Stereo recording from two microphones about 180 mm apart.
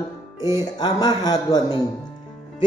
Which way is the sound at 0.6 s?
20° left (ahead or behind).